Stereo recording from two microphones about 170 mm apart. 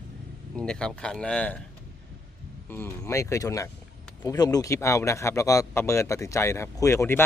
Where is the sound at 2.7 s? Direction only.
15° left (ahead or behind).